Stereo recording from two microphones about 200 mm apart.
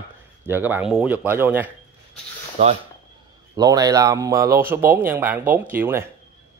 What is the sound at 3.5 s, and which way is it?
A man's voice, 20° right (ahead or behind).